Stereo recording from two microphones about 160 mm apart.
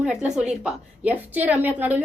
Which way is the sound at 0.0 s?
5° right (ahead or behind).